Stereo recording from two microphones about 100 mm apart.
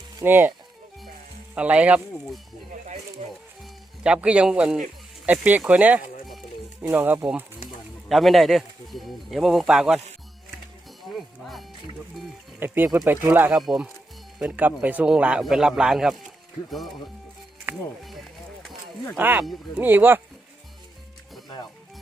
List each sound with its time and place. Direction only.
0.3 s speech: 20° right (ahead or behind)
1.5 s a man's voice: 15° right (ahead or behind)
3.6 s a man's voice: 10° right (ahead or behind)
8.1 s speech: centre (ahead or behind)
11.0 s livestock: centre (ahead or behind)
12.5 s speech: 20° right (ahead or behind)
13.5 s speech: 5° right (ahead or behind)
14.3 s a man's voice: 10° right (ahead or behind)
17.7 s speech: 20° right (ahead or behind)
19.1 s speech: 20° right (ahead or behind)
19.4 s a man's voice: 5° right (ahead or behind)
19.8 s speech: 20° right (ahead or behind)